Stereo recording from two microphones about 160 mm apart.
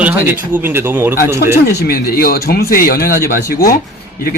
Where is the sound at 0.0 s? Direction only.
10° right (ahead or behind).